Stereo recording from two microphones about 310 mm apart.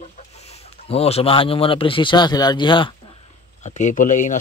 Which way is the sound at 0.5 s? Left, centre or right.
Centre.